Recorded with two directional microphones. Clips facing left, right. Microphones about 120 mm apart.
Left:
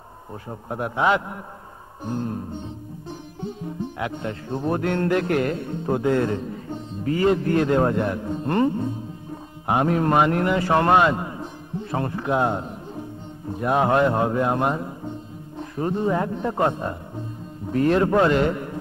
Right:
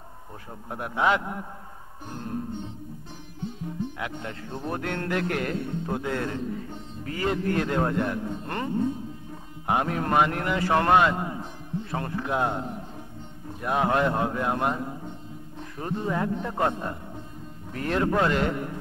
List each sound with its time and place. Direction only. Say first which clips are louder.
0.5 s a man's voice: left 6 dB; 30° left (ahead or behind)
4.0 s speech: left 6 dB; 25° left (ahead or behind)
5.9 s a man's voice: left 12 dB; 35° left (ahead or behind)
6.1 s speech: left 6 dB; 20° left (ahead or behind)
9.7 s speech: left 5 dB; 25° left (ahead or behind)
13.6 s a man's voice: left 5 dB; 35° left (ahead or behind)
17.7 s speech: left 6 dB; 20° left (ahead or behind)